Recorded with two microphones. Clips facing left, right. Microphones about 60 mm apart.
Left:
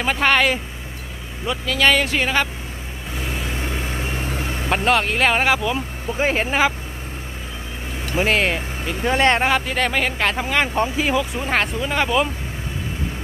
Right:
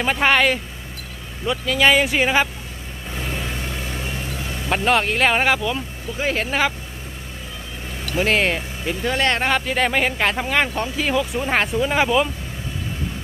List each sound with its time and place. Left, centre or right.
0.0 s speech: centre
3.2 s vehicle: centre
3.5 s vehicle: left
4.6 s speech: centre
6.1 s speech: left
8.0 s vehicle: centre
8.3 s speech: centre
9.0 s speech: left
9.4 s speech: centre
10.7 s speech: centre
11.1 s speech: centre